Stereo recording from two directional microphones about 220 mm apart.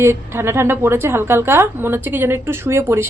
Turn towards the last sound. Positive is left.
turn(degrees=-10)  # may be behind; listen again after turning